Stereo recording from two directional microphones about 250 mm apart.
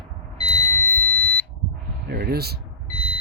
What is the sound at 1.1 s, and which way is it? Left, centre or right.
Smoke detector, right.